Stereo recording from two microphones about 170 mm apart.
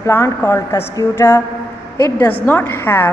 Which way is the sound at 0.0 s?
15° left (ahead or behind).